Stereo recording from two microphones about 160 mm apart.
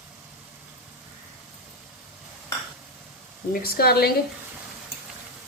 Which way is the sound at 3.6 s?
70° left (ahead or behind).